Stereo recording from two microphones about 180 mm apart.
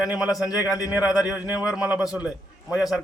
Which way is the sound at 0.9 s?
5° right (ahead or behind).